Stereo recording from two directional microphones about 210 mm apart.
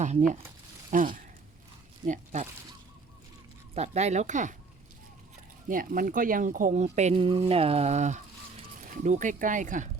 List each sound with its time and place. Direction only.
0.0 s speech: 35° right (ahead or behind)
3.8 s speech: 30° right (ahead or behind)
5.6 s speech: 40° right (ahead or behind)